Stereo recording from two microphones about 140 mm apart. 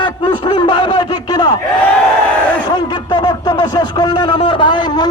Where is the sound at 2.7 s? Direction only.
30° left (ahead or behind).